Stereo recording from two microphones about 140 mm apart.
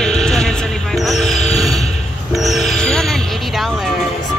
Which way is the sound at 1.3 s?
50° left (ahead or behind).